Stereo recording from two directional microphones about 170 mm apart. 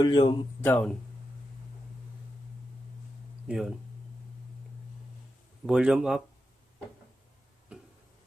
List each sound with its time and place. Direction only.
0.0 s speech: 30° left (ahead or behind)
0.6 s speech: 10° left (ahead or behind)
3.4 s speech: 5° right (ahead or behind)
5.6 s speech: 5° right (ahead or behind)